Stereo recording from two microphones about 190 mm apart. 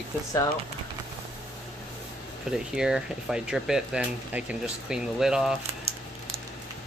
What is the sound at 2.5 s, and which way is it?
Speech, 5° right (ahead or behind).